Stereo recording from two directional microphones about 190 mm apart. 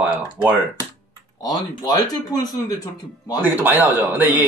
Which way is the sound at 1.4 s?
20° left (ahead or behind).